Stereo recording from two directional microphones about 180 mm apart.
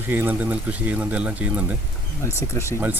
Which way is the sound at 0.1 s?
10° right (ahead or behind).